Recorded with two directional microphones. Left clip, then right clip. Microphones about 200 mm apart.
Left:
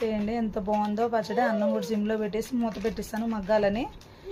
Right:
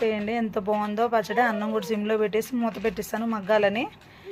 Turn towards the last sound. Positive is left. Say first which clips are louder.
# right 3 dB
turn(degrees=-10)  # may be behind; listen again after turning